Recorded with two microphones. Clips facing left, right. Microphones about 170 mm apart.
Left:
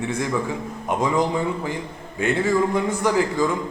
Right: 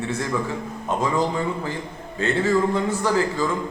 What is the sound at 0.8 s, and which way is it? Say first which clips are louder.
A man's voice: left 1 dB; 15° left (ahead or behind).